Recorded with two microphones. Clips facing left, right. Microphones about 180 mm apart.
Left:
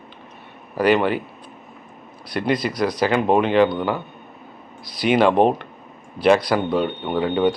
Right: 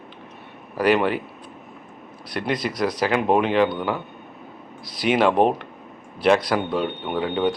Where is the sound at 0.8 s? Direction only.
Centre (ahead or behind).